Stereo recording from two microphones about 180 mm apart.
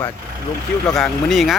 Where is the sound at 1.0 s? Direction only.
Centre (ahead or behind).